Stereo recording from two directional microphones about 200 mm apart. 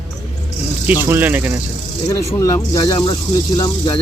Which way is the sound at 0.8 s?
10° right (ahead or behind).